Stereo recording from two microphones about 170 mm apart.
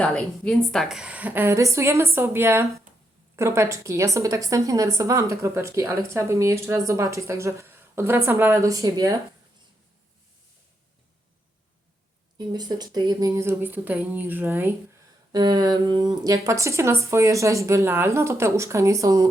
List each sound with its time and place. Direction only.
0.0 s a woman's voice: 5° left (ahead or behind); by 9.1 s 20° right (ahead or behind)
12.5 s a woman's voice: 25° right (ahead or behind)
15.3 s a woman's voice: 25° right (ahead or behind)